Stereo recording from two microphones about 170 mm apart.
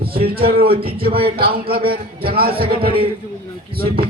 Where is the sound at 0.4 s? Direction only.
60° right (ahead or behind).